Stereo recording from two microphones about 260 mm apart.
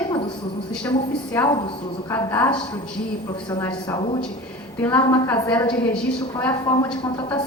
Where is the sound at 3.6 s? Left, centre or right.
Centre.